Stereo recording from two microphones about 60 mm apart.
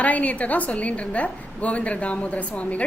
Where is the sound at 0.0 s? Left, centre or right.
Left.